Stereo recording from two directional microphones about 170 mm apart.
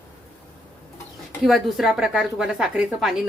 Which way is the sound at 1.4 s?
Centre (ahead or behind).